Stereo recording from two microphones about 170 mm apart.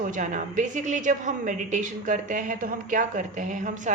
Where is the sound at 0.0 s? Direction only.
50° right (ahead or behind).